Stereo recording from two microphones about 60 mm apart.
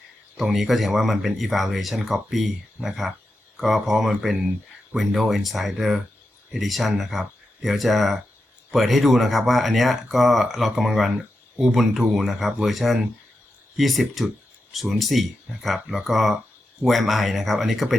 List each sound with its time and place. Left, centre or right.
0.5 s speech: centre